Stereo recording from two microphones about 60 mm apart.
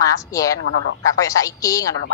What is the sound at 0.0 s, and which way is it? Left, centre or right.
A woman's voice, left.